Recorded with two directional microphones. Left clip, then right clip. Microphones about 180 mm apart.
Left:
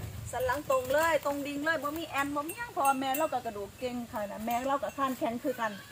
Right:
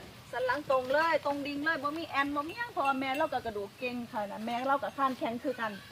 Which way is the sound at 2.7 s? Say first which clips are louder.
Left 2 dB; 30° right (ahead or behind).